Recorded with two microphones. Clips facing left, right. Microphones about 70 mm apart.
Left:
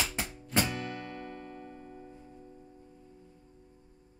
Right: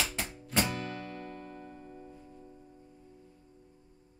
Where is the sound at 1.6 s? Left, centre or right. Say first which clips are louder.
Left 1 dB; left.